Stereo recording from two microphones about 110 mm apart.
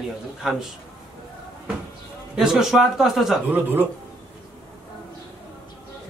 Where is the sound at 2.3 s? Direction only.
5° right (ahead or behind).